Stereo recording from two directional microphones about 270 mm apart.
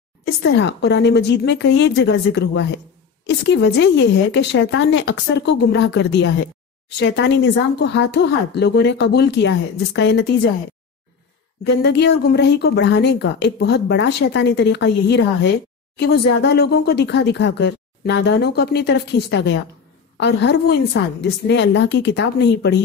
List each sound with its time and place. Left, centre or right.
0.4 s speech: left
11.6 s speech: left